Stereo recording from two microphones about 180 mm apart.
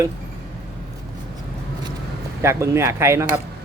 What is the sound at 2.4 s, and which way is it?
Speech, 15° right (ahead or behind).